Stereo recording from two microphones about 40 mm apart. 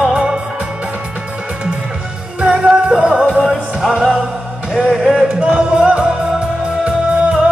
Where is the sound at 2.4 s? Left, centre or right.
Right.